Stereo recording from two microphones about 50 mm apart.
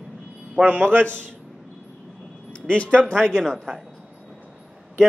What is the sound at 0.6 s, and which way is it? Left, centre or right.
Speech, right.